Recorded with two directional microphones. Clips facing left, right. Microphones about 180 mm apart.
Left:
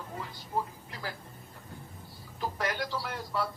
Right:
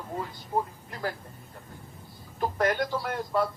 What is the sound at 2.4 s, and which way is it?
A man's voice, 50° right (ahead or behind).